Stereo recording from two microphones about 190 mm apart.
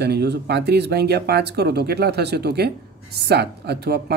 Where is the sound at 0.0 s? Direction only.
60° right (ahead or behind).